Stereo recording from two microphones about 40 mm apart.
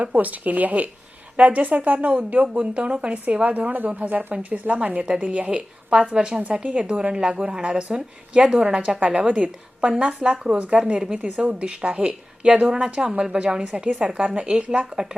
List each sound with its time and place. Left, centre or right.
0.0 s speech: right
5.0 s a woman's voice: right
5.3 s speech: right
6.1 s a woman's voice: centre
10.1 s a woman's voice: right
10.9 s a woman's voice: centre
12.7 s a woman's voice: centre
15.0 s speech: centre